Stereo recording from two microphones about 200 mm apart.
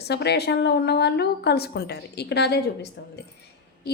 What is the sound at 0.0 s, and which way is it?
Speech, 55° left (ahead or behind).